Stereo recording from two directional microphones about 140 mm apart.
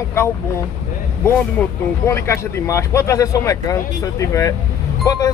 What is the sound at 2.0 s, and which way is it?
Speech, 20° left (ahead or behind).